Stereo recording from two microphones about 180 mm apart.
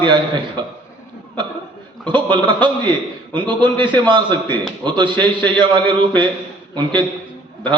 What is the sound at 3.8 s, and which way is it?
A man's voice, 25° right (ahead or behind).